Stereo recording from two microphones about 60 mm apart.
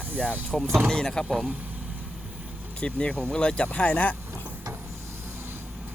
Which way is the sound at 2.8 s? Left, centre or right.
Centre.